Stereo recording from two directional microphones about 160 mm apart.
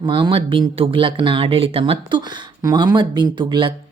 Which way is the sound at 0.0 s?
30° right (ahead or behind).